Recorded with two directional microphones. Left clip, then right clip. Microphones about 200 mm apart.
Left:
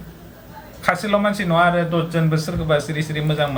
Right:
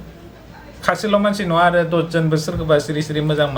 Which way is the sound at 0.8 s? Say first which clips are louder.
Right 2 dB; 15° right (ahead or behind).